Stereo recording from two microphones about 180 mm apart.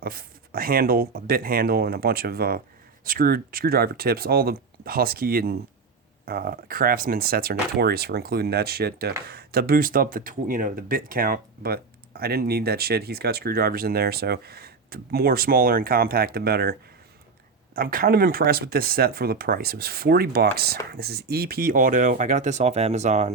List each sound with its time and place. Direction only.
0.0 s speech: 55° right (ahead or behind)
17.7 s speech: 55° right (ahead or behind)